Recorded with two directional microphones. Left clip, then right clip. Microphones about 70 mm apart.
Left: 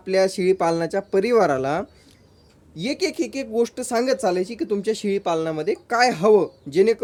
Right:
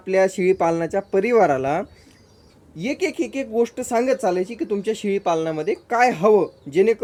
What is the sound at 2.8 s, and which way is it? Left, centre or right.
Speech, left.